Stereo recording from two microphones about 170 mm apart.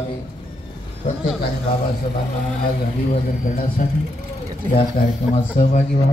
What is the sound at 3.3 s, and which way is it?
Speech, 60° left (ahead or behind).